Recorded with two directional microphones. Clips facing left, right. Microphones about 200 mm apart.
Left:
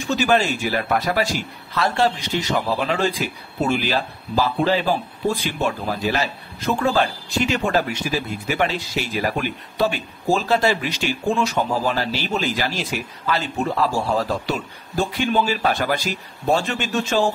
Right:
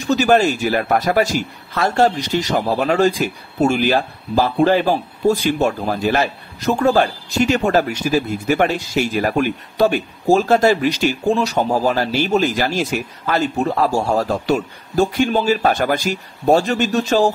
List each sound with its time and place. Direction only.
0.0 s speech: 40° right (ahead or behind)